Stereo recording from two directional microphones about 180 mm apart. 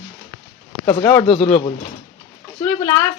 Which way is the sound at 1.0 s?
10° left (ahead or behind).